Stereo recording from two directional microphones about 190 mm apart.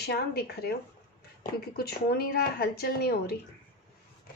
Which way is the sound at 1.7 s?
55° left (ahead or behind).